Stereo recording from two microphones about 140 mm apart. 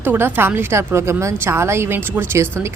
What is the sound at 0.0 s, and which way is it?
A woman's voice, 15° right (ahead or behind).